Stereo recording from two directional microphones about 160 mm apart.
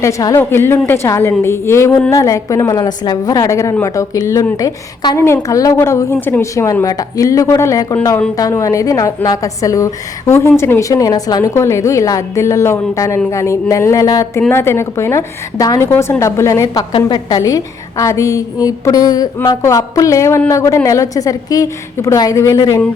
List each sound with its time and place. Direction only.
0.0 s a woman's voice: 20° left (ahead or behind)